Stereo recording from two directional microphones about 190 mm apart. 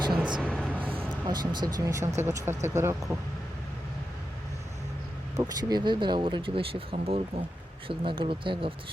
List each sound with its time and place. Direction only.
0.1 s a sound: 5° right (ahead or behind)
1.3 s speech: 20° right (ahead or behind)
5.4 s speech: 20° right (ahead or behind)